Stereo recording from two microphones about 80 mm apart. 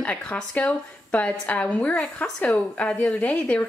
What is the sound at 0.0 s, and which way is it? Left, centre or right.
A woman's voice, centre.